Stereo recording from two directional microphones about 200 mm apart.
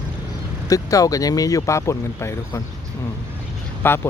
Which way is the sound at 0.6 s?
20° left (ahead or behind).